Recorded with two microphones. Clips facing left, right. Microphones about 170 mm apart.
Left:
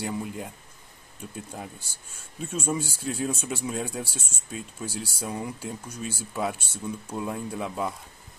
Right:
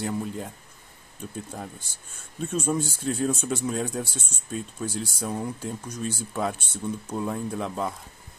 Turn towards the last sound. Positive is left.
turn(degrees=5)  # may be behind; listen again after turning